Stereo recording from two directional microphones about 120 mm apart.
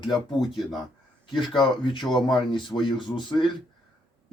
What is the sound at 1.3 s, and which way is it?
Speech, 40° left (ahead or behind).